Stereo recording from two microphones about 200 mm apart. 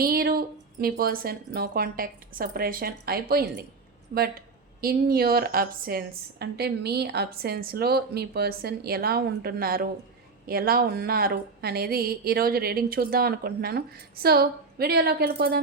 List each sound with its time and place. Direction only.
0.0 s a woman's voice: 50° right (ahead or behind)